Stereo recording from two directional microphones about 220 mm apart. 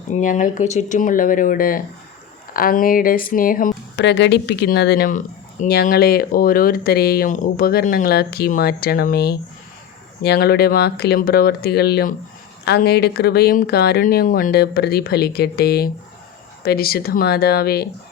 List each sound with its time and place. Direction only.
0.1 s speech: 35° left (ahead or behind)
4.0 s speech: 50° left (ahead or behind)